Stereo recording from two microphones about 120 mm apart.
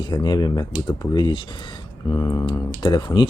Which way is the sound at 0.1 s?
35° left (ahead or behind).